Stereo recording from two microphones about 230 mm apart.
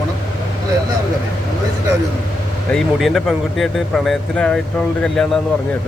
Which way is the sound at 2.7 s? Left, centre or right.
Centre.